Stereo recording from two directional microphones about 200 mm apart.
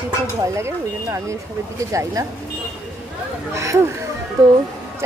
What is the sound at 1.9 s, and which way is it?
Speech, 15° right (ahead or behind).